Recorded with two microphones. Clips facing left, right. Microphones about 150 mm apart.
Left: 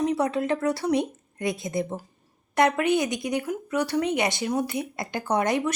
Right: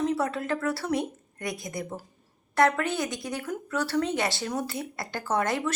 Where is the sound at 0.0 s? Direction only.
20° left (ahead or behind).